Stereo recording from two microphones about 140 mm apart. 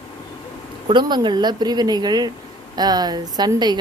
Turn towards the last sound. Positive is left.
turn(degrees=-30)  # may be behind; listen again after turning